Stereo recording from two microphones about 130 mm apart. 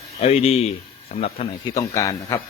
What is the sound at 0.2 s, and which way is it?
Speech, 50° left (ahead or behind).